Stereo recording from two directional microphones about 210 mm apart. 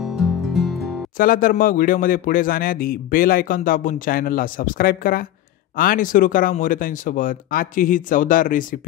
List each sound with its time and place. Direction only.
0.0 s music: centre (ahead or behind)
1.1 s a man's voice: 40° left (ahead or behind)